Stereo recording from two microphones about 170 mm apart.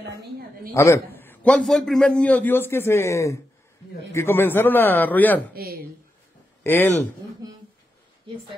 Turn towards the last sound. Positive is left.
turn(degrees=10)  # may be behind; listen again after turning